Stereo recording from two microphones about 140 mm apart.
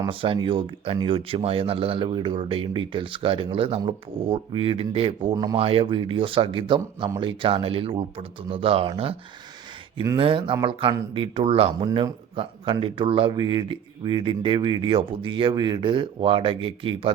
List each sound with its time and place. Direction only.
0.1 s speech: 40° right (ahead or behind)
5.5 s speech: 40° right (ahead or behind)
10.2 s speech: 40° right (ahead or behind)
11.9 s a man's voice: 25° right (ahead or behind)
12.4 s speech: 40° right (ahead or behind)